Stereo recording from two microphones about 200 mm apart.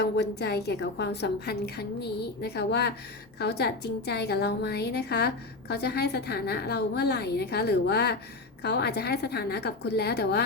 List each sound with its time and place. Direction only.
0.0 s a woman's voice: 55° left (ahead or behind)